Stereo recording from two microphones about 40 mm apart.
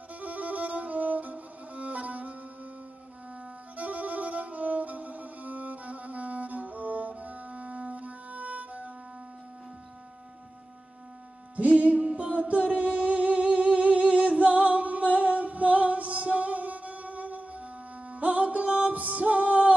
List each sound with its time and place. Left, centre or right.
0.1 s music: right
3.7 s music: right
11.5 s music: right